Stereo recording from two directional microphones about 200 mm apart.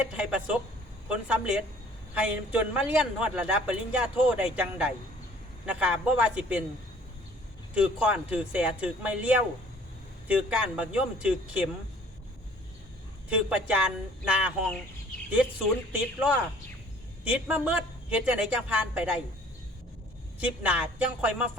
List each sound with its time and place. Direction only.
0.2 s a man's voice: 5° right (ahead or behind)
7.7 s a man's voice: 5° right (ahead or behind)
13.5 s a man's voice: 5° right (ahead or behind)
15.9 s a man's voice: 5° right (ahead or behind)
20.4 s a man's voice: 5° right (ahead or behind)